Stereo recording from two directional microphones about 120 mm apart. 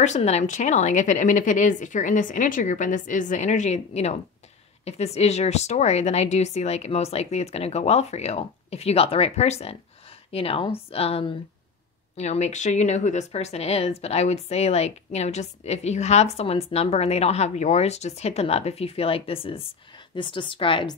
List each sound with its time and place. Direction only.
0.0 s a woman's voice: 70° left (ahead or behind); by 11.3 s 55° left (ahead or behind)
12.2 s a woman's voice: 70° left (ahead or behind); by 20.9 s 45° left (ahead or behind)